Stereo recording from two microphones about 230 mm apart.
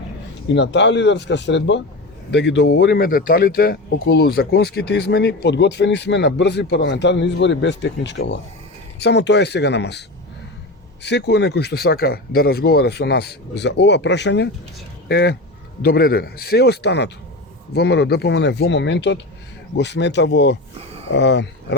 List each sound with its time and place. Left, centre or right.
0.4 s speech: left
11.0 s speech: left